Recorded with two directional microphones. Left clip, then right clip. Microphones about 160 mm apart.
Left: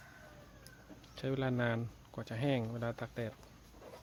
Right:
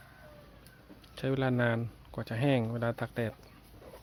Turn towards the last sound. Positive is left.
turn(degrees=-20)  # may be behind; listen again after turning